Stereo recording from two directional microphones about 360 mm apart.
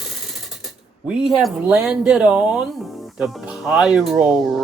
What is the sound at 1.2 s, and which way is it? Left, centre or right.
Speech, centre.